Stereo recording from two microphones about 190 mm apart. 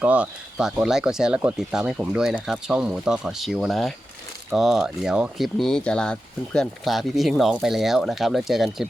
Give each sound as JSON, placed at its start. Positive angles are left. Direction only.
{"t": 0.0, "sound": "speech", "side_deg": -5}